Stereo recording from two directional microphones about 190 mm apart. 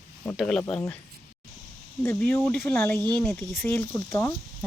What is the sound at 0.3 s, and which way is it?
Speech, 5° left (ahead or behind).